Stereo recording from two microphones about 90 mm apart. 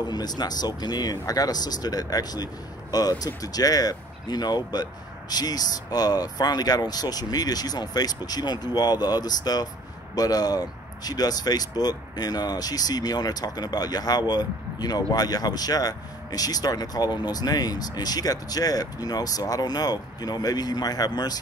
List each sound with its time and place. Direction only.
0.0 s speech: 50° left (ahead or behind)